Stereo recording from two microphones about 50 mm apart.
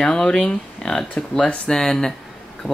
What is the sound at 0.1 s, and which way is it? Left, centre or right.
Speech, centre.